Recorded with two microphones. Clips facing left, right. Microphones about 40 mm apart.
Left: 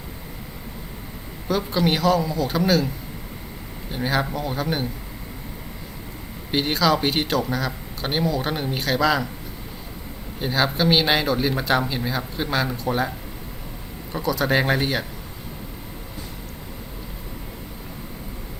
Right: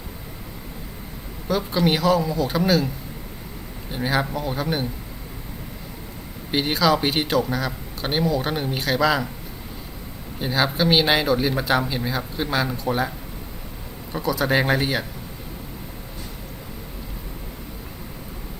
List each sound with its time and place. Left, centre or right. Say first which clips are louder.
1.5 s speech: right 1 dB; centre
3.9 s speech: even; centre
6.5 s speech: even; centre
10.4 s speech: even; centre